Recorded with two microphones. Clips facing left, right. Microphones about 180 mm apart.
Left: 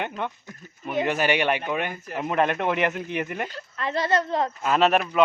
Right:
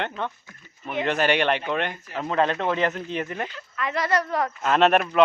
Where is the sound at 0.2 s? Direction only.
15° left (ahead or behind).